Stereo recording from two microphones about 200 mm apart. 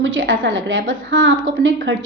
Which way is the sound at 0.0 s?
70° right (ahead or behind).